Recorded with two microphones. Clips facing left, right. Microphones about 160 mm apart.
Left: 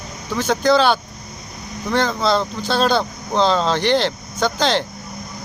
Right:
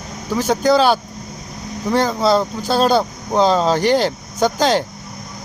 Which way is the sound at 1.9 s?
10° right (ahead or behind).